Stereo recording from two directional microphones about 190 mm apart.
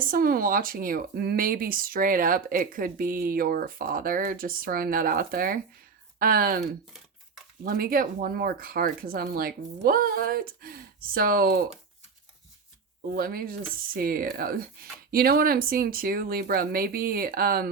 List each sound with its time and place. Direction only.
0.1 s speech: 50° right (ahead or behind)
13.1 s speech: 50° right (ahead or behind)